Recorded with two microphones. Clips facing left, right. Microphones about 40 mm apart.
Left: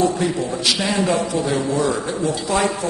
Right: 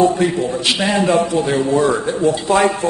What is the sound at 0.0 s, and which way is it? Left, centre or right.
A man's voice, right.